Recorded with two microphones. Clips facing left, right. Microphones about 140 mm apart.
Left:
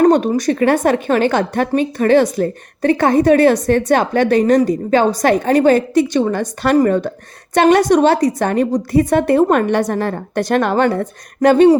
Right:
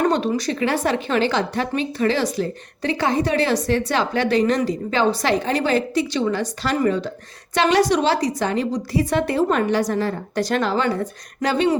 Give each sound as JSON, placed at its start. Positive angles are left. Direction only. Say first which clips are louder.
{"t": 0.0, "sound": "a woman's voice", "louder": "left 8 dB", "side_deg": 45}